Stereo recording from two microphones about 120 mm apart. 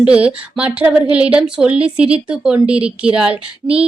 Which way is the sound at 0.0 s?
10° right (ahead or behind).